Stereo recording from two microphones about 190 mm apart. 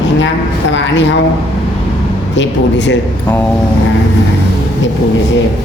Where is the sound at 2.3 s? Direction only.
70° left (ahead or behind).